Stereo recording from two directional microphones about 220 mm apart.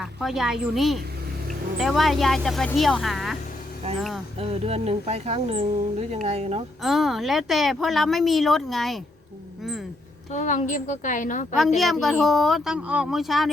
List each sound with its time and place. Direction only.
0.0 s speech: centre (ahead or behind)
4.4 s speech: 30° right (ahead or behind)
6.8 s speech: centre (ahead or behind)
10.3 s a woman's voice: 35° left (ahead or behind)
11.8 s speech: centre (ahead or behind)